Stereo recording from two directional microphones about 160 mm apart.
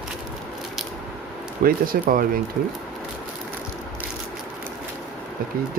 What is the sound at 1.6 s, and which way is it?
Speech, 65° right (ahead or behind).